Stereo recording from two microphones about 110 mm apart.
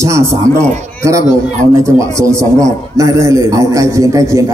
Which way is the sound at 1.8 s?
25° right (ahead or behind).